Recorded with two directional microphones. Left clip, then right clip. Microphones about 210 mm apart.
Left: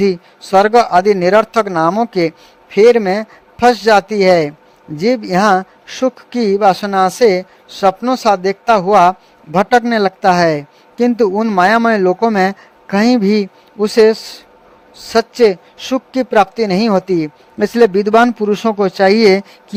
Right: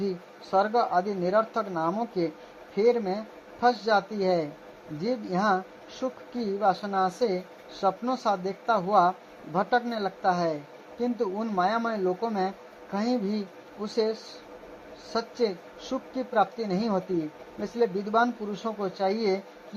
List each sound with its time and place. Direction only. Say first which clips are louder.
0.5 s a man's voice: left 15 dB; 55° left (ahead or behind)